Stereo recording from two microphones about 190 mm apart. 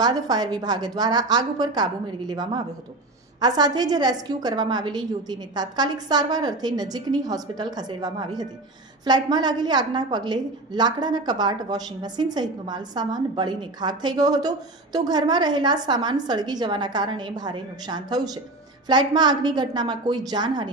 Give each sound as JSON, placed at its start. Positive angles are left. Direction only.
{"t": 0.0, "sound": "a woman's voice", "side_deg": -20}